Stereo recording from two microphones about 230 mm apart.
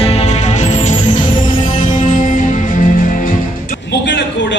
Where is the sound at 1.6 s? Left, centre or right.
Left.